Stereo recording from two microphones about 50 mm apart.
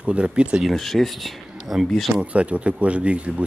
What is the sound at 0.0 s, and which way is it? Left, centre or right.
Speech, right.